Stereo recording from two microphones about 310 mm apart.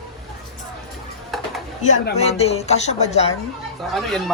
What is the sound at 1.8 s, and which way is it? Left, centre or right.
A woman's voice, left.